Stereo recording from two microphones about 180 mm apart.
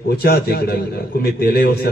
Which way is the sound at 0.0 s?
60° left (ahead or behind).